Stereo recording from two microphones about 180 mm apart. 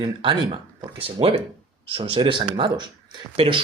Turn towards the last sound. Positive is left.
turn(degrees=-30)  # may be behind; listen again after turning